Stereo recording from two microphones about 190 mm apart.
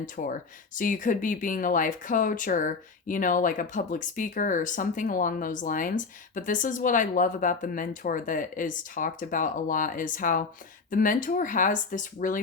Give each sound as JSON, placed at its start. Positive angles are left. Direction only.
{"t": 0.0, "sound": "speech", "side_deg": 45}